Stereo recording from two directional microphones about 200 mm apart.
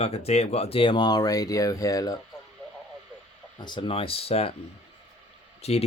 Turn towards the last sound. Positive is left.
turn(degrees=30)  # may be behind; listen again after turning